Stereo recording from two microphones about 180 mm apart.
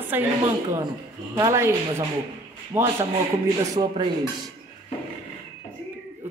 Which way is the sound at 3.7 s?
25° right (ahead or behind).